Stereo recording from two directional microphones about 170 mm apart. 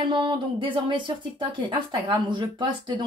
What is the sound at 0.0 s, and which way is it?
Speech, 25° right (ahead or behind).